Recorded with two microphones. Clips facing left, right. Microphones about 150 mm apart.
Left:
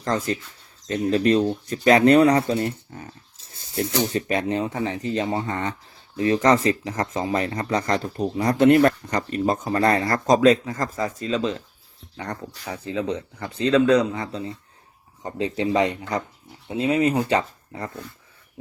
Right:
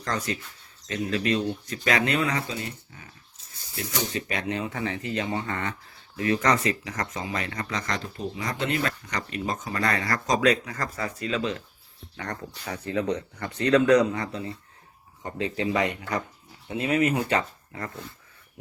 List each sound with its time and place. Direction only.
0.0 s speech: 25° left (ahead or behind); by 3.1 s 50° left (ahead or behind)
3.3 s snake: 25° left (ahead or behind)
4.3 s speech: 30° left (ahead or behind)
5.5 s speech: 15° left (ahead or behind)
6.1 s speech: 30° left (ahead or behind); by 8.9 s 50° left (ahead or behind)
9.0 s speech: 35° left (ahead or behind)
10.7 s speech: 25° left (ahead or behind)
12.1 s speech: 10° left (ahead or behind)
13.6 s speech: 25° left (ahead or behind)
17.7 s speech: 15° left (ahead or behind)